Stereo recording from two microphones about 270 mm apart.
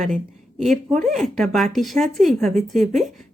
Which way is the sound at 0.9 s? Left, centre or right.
Right.